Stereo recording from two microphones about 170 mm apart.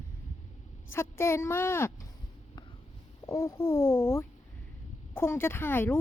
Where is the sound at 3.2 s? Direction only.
15° left (ahead or behind).